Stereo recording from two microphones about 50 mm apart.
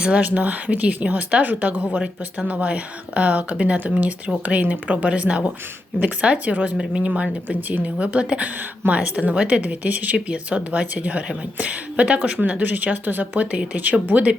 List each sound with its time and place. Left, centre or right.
0.0 s speech: right
13.5 s speech: right